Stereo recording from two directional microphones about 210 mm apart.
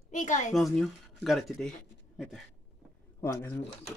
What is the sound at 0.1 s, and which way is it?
Speech, 35° left (ahead or behind).